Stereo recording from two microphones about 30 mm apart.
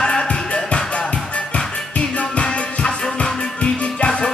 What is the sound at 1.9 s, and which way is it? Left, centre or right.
Music, left.